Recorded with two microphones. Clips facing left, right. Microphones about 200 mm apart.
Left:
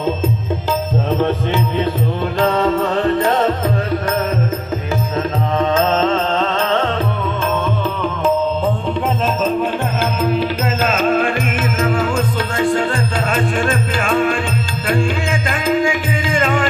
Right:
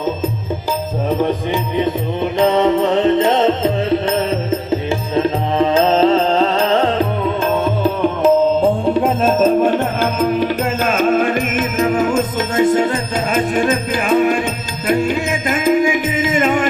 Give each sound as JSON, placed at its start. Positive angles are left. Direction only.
{"t": 1.2, "sound": "music", "side_deg": -15}
{"t": 9.0, "sound": "music", "side_deg": -10}